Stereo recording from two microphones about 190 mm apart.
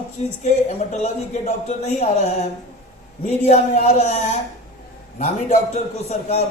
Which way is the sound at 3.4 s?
35° left (ahead or behind).